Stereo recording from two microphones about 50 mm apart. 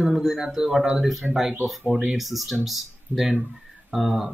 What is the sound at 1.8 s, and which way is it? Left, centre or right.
Speech, centre.